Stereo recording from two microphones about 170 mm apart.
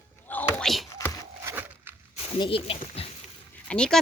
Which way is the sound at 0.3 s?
10° left (ahead or behind).